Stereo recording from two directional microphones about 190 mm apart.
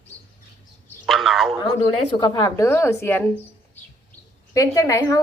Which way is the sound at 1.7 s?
20° left (ahead or behind).